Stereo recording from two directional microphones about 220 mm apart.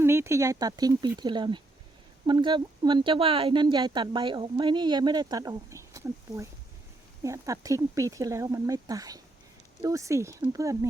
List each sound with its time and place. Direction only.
0.0 s speech: 10° right (ahead or behind)